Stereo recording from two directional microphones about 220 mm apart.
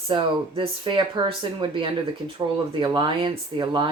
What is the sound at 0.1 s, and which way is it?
Speech, 25° right (ahead or behind).